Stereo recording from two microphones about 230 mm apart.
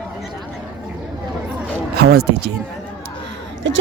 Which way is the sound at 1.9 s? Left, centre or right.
Right.